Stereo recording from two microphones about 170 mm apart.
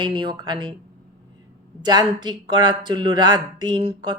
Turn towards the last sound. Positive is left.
turn(degrees=-30)  # may be behind; listen again after turning